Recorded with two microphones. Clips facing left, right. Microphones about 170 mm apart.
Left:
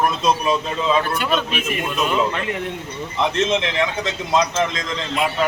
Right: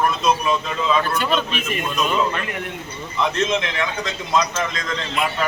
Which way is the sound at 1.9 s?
25° left (ahead or behind).